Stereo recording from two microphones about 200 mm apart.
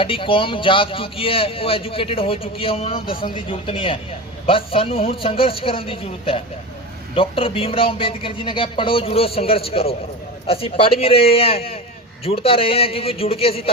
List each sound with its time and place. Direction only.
0.0 s speech: 25° left (ahead or behind)